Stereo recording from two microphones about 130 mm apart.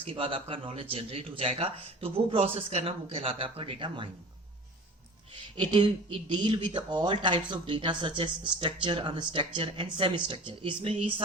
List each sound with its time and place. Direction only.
0.0 s speech: 45° right (ahead or behind)
5.5 s speech: 40° right (ahead or behind)